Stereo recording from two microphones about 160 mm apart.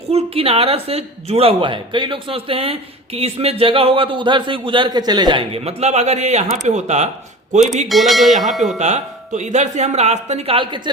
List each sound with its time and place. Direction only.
0.1 s a woman's voice: 40° right (ahead or behind)
7.9 s speech: centre (ahead or behind)
8.8 s speech: 45° right (ahead or behind)